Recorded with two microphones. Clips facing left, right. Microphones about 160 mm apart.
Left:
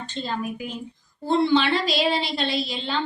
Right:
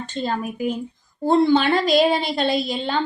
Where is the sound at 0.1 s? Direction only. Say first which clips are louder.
Right 3 dB; 50° right (ahead or behind).